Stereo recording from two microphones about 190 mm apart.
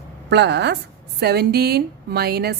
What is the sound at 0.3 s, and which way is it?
Speech, 65° right (ahead or behind).